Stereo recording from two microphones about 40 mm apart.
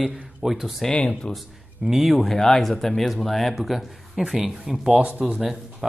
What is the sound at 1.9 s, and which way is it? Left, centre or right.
Speech, centre.